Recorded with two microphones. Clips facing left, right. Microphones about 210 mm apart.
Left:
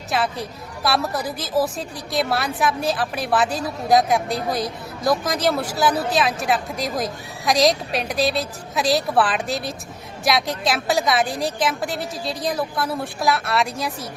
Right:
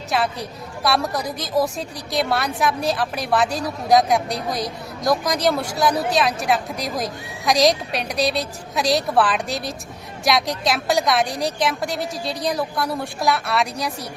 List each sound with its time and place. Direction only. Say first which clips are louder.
0.1 s a woman's voice: even; centre (ahead or behind)